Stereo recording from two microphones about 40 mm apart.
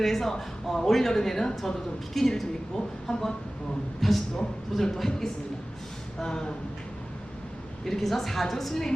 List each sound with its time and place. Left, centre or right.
0.0 s speech: centre
7.9 s a woman's voice: centre